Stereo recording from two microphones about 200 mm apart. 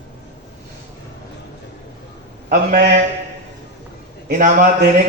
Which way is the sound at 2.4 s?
40° right (ahead or behind).